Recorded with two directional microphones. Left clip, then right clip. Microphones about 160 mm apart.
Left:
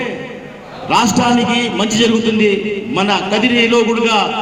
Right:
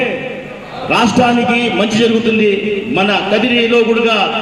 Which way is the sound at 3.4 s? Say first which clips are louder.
Left 1 dB; 15° left (ahead or behind).